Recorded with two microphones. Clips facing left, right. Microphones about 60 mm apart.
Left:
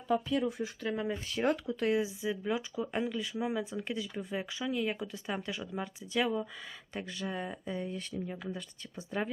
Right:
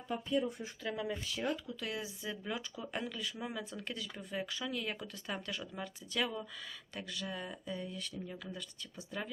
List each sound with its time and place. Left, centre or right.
0.3 s speech: left
0.9 s speech: left
1.4 s speech: left
1.8 s speech: left